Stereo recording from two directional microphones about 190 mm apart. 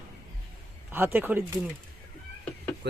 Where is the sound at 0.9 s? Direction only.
10° right (ahead or behind).